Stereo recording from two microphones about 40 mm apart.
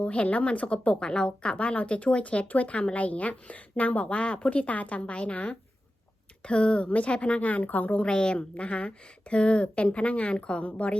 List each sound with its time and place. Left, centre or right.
0.0 s speech: left
8.0 s a woman's voice: left